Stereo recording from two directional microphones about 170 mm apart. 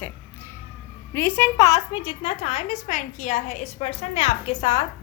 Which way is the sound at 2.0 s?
35° left (ahead or behind).